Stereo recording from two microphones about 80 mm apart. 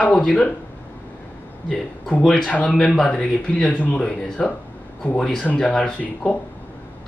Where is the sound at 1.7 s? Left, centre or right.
Centre.